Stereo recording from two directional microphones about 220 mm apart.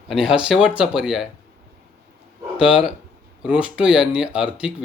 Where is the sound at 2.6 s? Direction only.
5° right (ahead or behind).